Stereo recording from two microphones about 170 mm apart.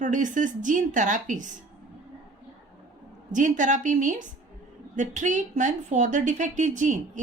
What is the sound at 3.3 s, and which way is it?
Speech, 50° right (ahead or behind).